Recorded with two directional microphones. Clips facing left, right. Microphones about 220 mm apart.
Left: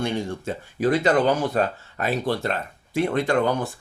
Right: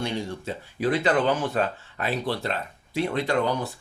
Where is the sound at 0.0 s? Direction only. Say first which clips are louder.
Left 3 dB; 50° left (ahead or behind).